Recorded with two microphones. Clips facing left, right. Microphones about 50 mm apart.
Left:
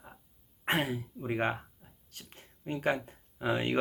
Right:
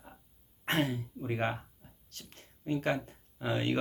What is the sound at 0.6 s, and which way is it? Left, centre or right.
Speech, centre.